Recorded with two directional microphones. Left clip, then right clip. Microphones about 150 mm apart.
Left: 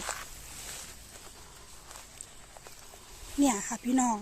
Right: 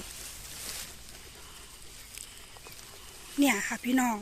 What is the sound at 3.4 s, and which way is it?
Speech, 20° left (ahead or behind).